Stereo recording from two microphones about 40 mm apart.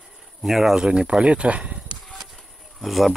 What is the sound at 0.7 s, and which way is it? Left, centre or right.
Speech, right.